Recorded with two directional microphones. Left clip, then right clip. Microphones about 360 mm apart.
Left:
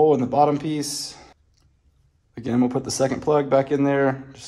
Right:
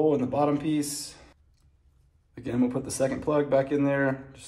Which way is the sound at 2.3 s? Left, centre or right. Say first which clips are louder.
Left 5 dB; left.